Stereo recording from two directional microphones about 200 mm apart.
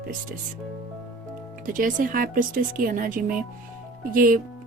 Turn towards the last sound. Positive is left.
turn(degrees=-45)  # may be behind; listen again after turning